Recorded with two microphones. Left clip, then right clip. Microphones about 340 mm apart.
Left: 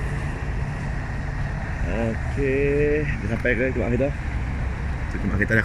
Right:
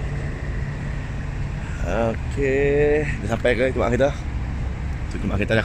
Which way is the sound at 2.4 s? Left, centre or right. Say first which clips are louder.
Right 3 dB; right.